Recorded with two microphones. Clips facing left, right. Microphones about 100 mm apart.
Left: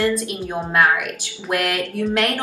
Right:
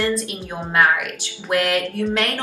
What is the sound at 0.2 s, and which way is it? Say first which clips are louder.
Speech: left 3 dB; 15° left (ahead or behind).